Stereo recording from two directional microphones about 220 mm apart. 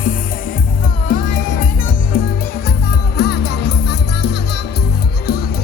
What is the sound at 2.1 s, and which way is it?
Music, 40° left (ahead or behind).